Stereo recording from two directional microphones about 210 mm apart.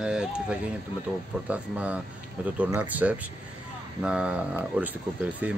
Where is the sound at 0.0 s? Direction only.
5° right (ahead or behind).